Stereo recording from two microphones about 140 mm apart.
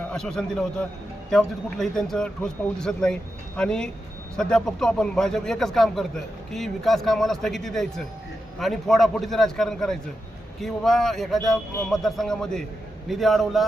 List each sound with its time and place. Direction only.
0.1 s a man's voice: 5° left (ahead or behind)